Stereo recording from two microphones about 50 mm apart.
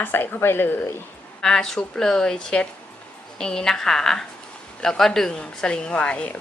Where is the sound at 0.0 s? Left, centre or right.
Left.